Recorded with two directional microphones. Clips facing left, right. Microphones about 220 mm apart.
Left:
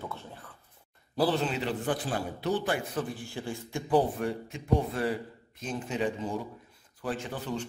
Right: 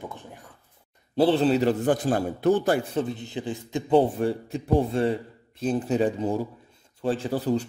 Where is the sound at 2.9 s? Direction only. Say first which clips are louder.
Right 6 dB; 20° right (ahead or behind).